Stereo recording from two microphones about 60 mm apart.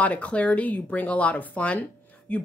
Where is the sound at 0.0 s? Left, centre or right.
Left.